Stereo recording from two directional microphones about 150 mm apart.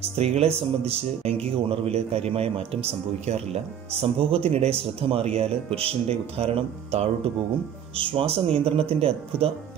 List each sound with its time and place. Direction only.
0.0 s a man's voice: 45° right (ahead or behind)